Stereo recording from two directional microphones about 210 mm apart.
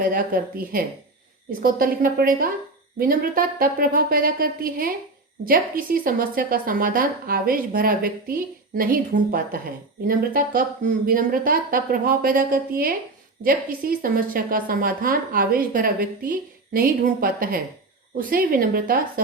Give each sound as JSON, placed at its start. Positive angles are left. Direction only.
{"t": 0.0, "sound": "a woman's voice", "side_deg": -45}